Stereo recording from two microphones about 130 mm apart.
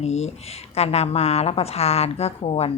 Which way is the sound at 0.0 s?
55° left (ahead or behind).